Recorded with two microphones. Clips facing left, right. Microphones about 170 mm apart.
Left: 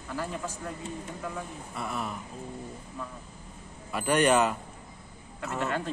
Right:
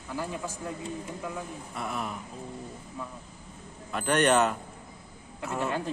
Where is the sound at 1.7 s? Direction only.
Centre (ahead or behind).